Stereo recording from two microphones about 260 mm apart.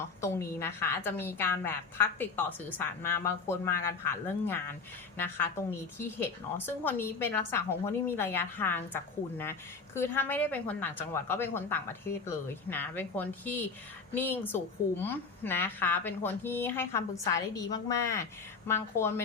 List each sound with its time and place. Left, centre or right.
0.0 s a woman's voice: centre